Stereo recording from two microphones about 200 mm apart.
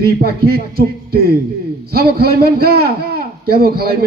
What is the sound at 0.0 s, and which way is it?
A man's voice, 50° right (ahead or behind).